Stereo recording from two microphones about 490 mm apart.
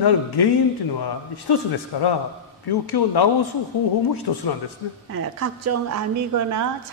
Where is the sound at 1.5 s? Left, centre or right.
Left.